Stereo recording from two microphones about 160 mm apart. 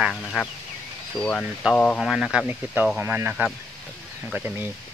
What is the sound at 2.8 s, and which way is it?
Speech, 10° right (ahead or behind).